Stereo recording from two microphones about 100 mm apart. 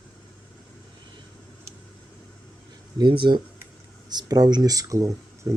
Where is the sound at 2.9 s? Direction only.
50° right (ahead or behind).